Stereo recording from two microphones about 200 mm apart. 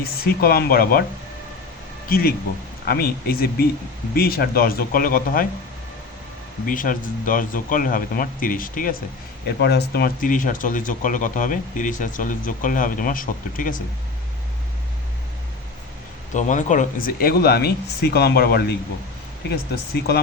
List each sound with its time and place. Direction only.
0.0 s speech: 50° left (ahead or behind)
2.0 s speech: 45° left (ahead or behind)
6.7 s speech: 40° left (ahead or behind)
9.6 s speech: 55° left (ahead or behind)
16.3 s speech: 40° left (ahead or behind)
19.7 s speech: 50° left (ahead or behind)